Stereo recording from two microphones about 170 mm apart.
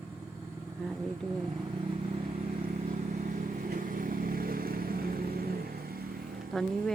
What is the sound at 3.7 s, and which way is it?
Vehicle, 55° right (ahead or behind).